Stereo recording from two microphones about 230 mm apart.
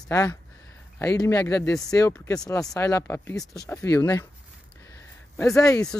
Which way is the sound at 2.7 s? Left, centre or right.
Centre.